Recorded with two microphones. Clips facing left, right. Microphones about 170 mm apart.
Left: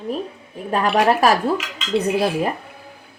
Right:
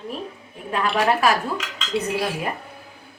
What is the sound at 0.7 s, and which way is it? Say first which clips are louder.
Speech: left 4 dB; 40° left (ahead or behind).